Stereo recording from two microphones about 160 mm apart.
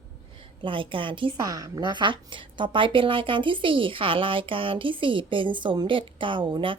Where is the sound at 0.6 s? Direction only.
30° right (ahead or behind).